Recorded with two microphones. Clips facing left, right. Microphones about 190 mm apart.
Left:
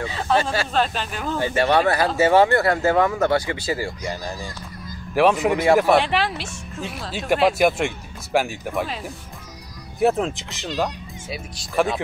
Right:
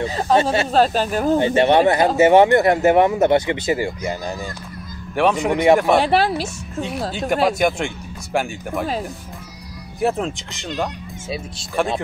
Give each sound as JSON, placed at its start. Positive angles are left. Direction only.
{"t": 0.0, "sound": "speech", "side_deg": -40}
{"t": 0.4, "sound": "speech", "side_deg": -25}
{"t": 0.7, "sound": "speech", "side_deg": -40}
{"t": 1.4, "sound": "speech", "side_deg": -20}
{"t": 5.1, "sound": "speech", "side_deg": 0}
{"t": 5.9, "sound": "speech", "side_deg": -40}
{"t": 7.1, "sound": "speech", "side_deg": 0}
{"t": 9.9, "sound": "speech", "side_deg": 0}
{"t": 11.8, "sound": "speech", "side_deg": 0}